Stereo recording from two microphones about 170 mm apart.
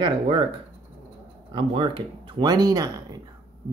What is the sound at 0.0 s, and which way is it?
Speech, 30° right (ahead or behind).